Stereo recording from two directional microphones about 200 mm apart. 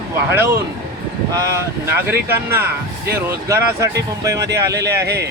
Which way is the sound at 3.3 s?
15° right (ahead or behind).